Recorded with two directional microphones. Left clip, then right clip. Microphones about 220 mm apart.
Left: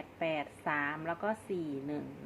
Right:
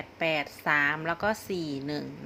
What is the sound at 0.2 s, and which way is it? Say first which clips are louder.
A woman's voice: right 7 dB; 25° right (ahead or behind).